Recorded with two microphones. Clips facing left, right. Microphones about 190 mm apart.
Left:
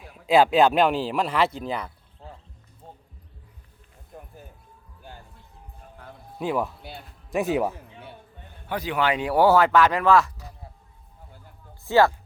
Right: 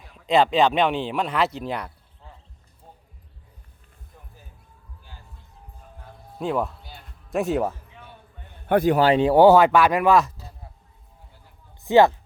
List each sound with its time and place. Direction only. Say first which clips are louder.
0.3 s speech: left 1 dB; 5° left (ahead or behind)
4.1 s music: left 9 dB; 55° left (ahead or behind)
6.4 s speech: right 1 dB; centre (ahead or behind)
8.7 s speech: right 8 dB; 45° right (ahead or behind); by 10.5 s 25° right (ahead or behind)
11.9 s speech: right 3 dB; 20° right (ahead or behind)